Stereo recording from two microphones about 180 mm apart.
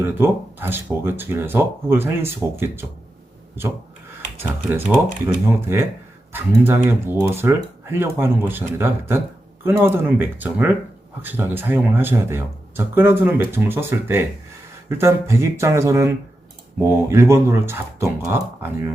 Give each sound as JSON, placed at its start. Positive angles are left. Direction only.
{"t": 0.0, "sound": "speech", "side_deg": -10}
{"t": 4.4, "sound": "speech", "side_deg": -10}